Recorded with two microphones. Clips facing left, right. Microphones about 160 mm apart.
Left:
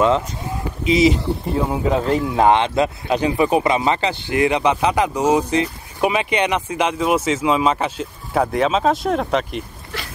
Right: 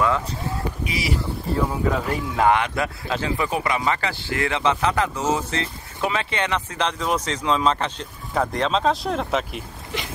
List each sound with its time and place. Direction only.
0.8 s speech: 20° left (ahead or behind); by 9.6 s centre (ahead or behind)